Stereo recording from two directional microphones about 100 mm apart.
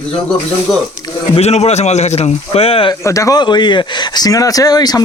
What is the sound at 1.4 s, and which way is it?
Speech, 90° left.